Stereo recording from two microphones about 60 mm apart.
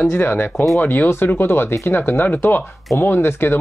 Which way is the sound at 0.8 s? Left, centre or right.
Left.